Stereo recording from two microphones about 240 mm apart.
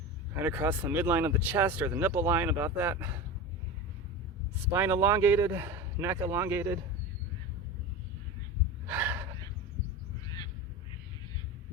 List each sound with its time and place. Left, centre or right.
0.4 s speech: centre
4.7 s speech: centre
8.9 s gasp: centre
10.2 s crow: centre